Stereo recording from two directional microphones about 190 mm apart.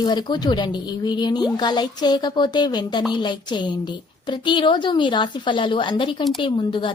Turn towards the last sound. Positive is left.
turn(degrees=25)  # may be behind; listen again after turning